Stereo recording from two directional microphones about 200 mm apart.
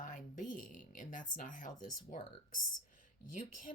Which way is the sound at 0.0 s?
45° left (ahead or behind).